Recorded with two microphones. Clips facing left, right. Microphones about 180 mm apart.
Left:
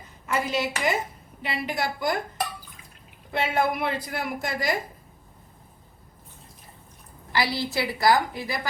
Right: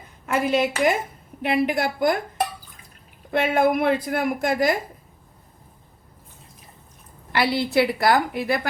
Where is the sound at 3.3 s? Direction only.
50° right (ahead or behind).